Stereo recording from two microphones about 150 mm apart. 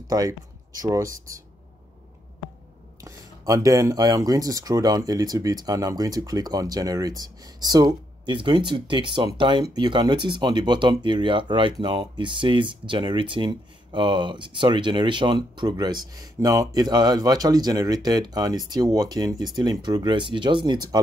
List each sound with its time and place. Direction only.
0.1 s speech: 25° right (ahead or behind)
3.0 s speech: 20° right (ahead or behind)